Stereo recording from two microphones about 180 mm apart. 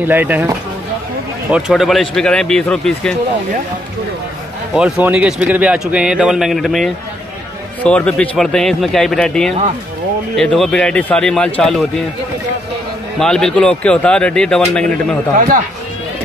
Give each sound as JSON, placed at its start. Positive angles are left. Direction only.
{"t": 0.0, "sound": "speech", "side_deg": -10}
{"t": 1.5, "sound": "speech", "side_deg": 0}
{"t": 4.7, "sound": "speech", "side_deg": -5}
{"t": 13.2, "sound": "speech", "side_deg": 5}
{"t": 15.3, "sound": "speech", "side_deg": -50}